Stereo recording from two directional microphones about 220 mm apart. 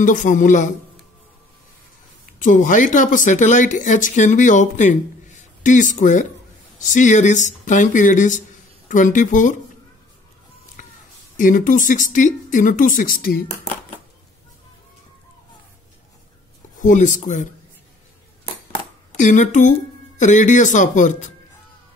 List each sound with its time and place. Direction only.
0.0 s speech: 35° left (ahead or behind)
2.3 s speech: 35° left (ahead or behind)
10.8 s a sound: 35° left (ahead or behind)
11.3 s speech: 35° left (ahead or behind)
16.7 s speech: 35° left (ahead or behind)
19.1 s speech: 35° left (ahead or behind)